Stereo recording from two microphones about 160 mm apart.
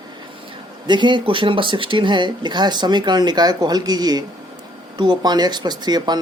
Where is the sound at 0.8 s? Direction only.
30° right (ahead or behind).